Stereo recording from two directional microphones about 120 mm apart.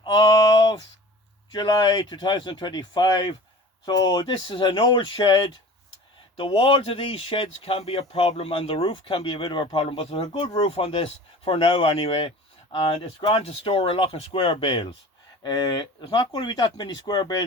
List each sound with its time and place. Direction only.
0.0 s a sound: 40° left (ahead or behind)
1.5 s speech: 35° left (ahead or behind)
10.7 s speech: 50° left (ahead or behind)